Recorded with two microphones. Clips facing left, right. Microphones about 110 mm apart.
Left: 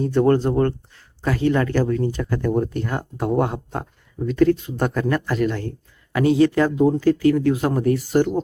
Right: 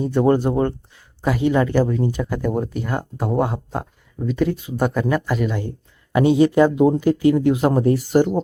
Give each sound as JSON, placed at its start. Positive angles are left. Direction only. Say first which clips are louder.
{"t": 0.0, "sound": "speech", "louder": "even", "side_deg": -10}
{"t": 6.1, "sound": "speech", "louder": "right 2 dB", "side_deg": -20}